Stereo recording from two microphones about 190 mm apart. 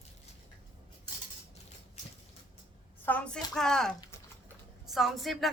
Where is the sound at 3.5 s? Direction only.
Centre (ahead or behind).